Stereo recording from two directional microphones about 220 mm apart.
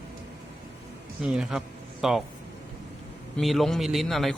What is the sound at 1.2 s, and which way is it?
A man's voice, 5° right (ahead or behind).